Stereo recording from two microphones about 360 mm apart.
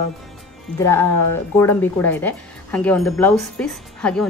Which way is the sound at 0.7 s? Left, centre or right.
Centre.